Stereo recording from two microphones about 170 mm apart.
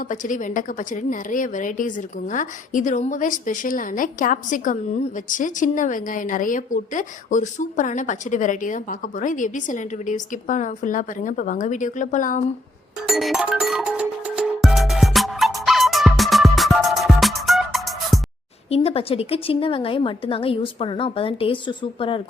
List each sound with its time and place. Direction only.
0.1 s a woman's voice: 50° left (ahead or behind)
13.1 s music: centre (ahead or behind)
18.7 s a woman's voice: 35° left (ahead or behind)